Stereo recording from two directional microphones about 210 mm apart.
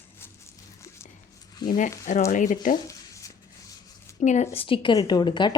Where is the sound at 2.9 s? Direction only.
15° left (ahead or behind).